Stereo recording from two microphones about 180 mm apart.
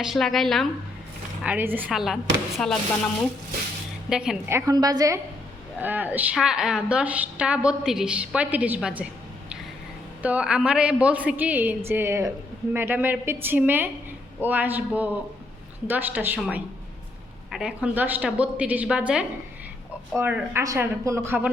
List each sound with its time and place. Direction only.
0.0 s a woman's voice: centre (ahead or behind)
1.5 s a woman's voice: 10° right (ahead or behind)
4.1 s a woman's voice: 5° right (ahead or behind)
10.2 s a woman's voice: 5° right (ahead or behind)